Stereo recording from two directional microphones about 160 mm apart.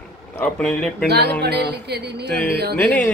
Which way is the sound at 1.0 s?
90° right.